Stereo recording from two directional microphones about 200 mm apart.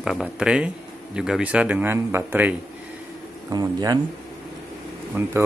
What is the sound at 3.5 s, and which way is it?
Speech, 20° right (ahead or behind).